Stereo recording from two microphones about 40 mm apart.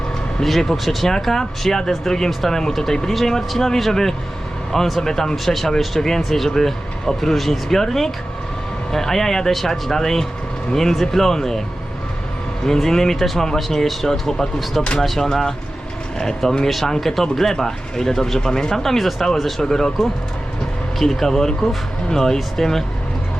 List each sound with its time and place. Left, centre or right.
0.6 s speech: centre
12.6 s speech: centre
16.6 s speech: centre
21.0 s speech: centre